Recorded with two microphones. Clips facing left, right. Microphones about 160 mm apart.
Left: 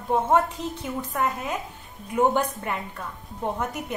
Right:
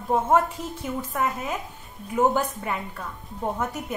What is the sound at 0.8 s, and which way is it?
A woman's voice, 5° right (ahead or behind).